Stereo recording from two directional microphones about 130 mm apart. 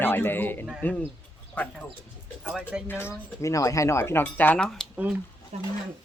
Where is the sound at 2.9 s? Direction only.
20° left (ahead or behind).